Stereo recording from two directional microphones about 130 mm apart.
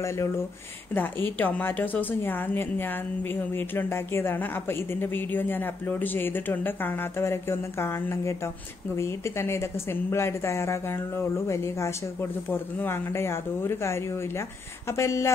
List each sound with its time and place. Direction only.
0.9 s a woman's voice: 15° left (ahead or behind)